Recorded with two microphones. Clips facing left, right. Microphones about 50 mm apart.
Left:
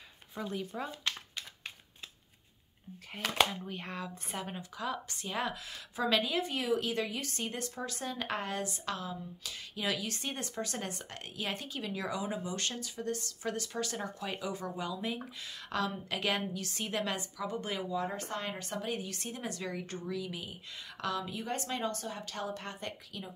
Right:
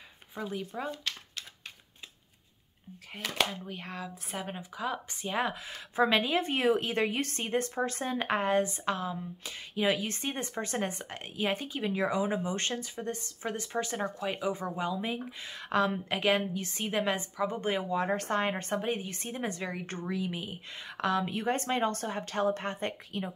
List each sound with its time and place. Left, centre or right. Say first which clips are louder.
0.3 s speech: right 1 dB; centre
3.3 s a woman's voice: left 1 dB; centre; by 17.8 s right
17.8 s speech: right 5 dB; right
18.4 s a woman's voice: right 7 dB; right